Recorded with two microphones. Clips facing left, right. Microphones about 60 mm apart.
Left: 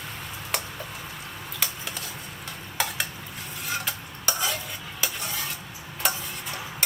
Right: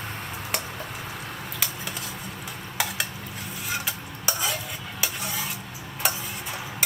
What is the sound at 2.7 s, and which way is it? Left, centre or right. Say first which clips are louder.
Stir: even; centre.